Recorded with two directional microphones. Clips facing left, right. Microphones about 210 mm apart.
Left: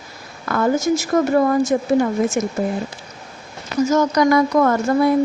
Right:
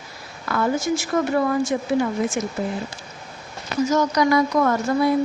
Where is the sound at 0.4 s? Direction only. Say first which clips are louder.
Left 4 dB; 45° left (ahead or behind).